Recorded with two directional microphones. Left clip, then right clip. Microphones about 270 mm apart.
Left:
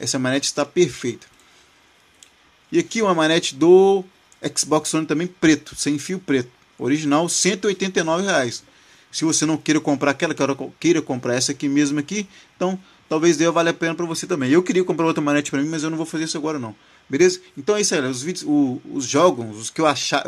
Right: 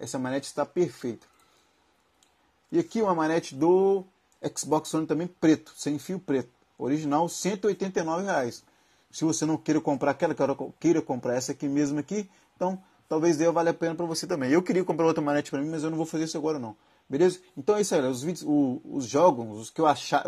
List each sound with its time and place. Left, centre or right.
0.0 s speech: centre
2.7 s speech: centre
14.0 s speech: centre